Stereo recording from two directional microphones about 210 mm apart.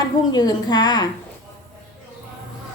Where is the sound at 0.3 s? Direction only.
20° left (ahead or behind).